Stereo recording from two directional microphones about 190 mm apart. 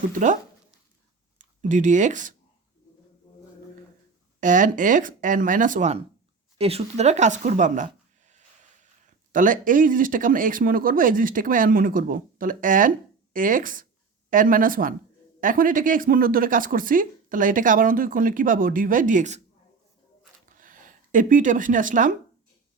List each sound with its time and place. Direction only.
0.1 s speech: 40° right (ahead or behind)
1.4 s speech: 40° right (ahead or behind)
4.4 s speech: 45° right (ahead or behind)
8.3 s a sound: 40° right (ahead or behind)
9.3 s speech: 45° right (ahead or behind)
20.6 s speech: 45° right (ahead or behind)